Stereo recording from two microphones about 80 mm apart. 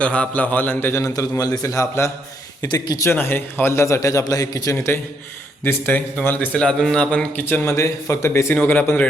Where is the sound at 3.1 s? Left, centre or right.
Left.